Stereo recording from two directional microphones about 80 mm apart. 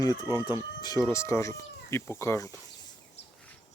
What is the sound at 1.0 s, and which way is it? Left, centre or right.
Speech, left.